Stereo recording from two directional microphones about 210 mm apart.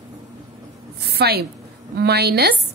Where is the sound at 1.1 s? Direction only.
50° right (ahead or behind).